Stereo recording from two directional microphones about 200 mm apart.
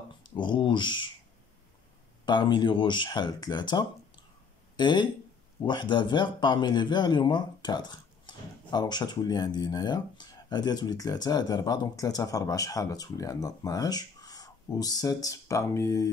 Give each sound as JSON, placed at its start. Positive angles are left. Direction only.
{"t": 0.2, "sound": "speech", "side_deg": 25}
{"t": 2.2, "sound": "speech", "side_deg": 20}